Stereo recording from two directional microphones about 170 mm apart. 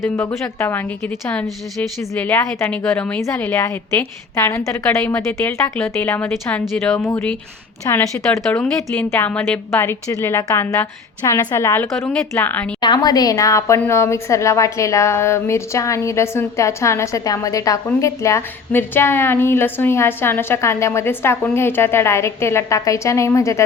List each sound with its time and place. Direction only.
0.0 s a woman's voice: 15° left (ahead or behind)
9.0 s a woman's voice: 10° left (ahead or behind)
12.8 s a woman's voice: 25° left (ahead or behind)